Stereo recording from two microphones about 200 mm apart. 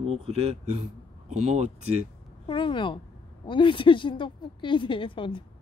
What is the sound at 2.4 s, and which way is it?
A woman's voice, 25° left (ahead or behind).